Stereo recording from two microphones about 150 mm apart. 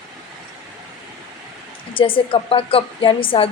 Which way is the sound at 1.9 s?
35° left (ahead or behind).